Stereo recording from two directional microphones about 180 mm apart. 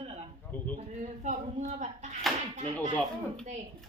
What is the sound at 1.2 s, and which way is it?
Speech, 40° right (ahead or behind).